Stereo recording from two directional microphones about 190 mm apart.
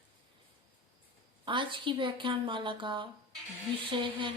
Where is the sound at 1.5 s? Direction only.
25° right (ahead or behind).